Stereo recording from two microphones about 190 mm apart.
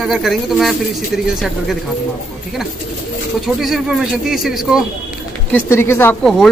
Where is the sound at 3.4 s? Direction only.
Centre (ahead or behind).